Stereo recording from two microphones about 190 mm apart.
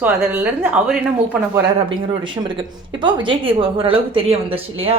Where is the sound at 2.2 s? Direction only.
25° right (ahead or behind).